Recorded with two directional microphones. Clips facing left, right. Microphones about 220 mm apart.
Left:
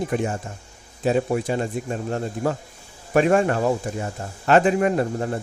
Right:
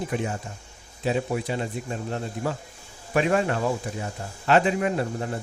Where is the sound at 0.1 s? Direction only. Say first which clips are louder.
Left 4 dB; 50° left (ahead or behind).